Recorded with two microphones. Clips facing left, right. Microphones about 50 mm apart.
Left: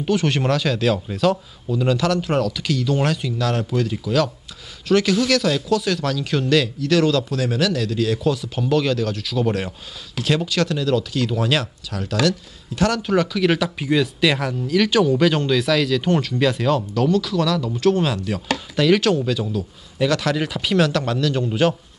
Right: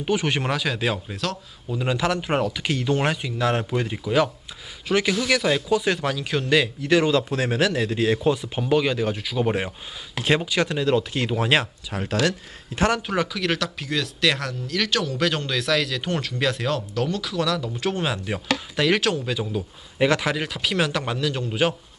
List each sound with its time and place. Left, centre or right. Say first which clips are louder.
0.0 s speech: left 3 dB; centre
1.7 s speech: left 4 dB; centre
13.0 s speech: left 5 dB; centre
13.4 s speech: left 6 dB; centre
20.3 s speech: left 5 dB; centre